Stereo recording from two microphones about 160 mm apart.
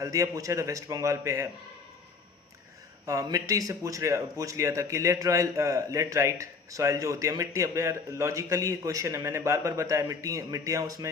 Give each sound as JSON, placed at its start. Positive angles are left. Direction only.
{"t": 0.0, "sound": "speech", "side_deg": -20}
{"t": 3.1, "sound": "speech", "side_deg": -20}